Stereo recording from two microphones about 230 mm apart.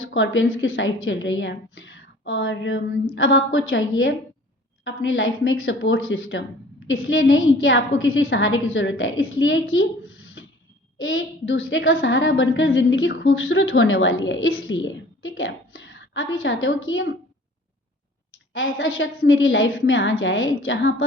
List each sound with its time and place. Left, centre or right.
0.0 s a woman's voice: left
18.5 s a woman's voice: left